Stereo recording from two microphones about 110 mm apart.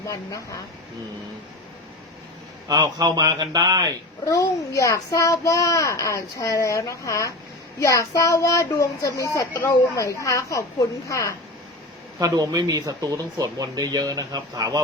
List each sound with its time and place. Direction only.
0.1 s speech: 30° left (ahead or behind)
2.6 s speech: 35° right (ahead or behind)
4.3 s speech: 30° left (ahead or behind)
12.2 s speech: 35° right (ahead or behind)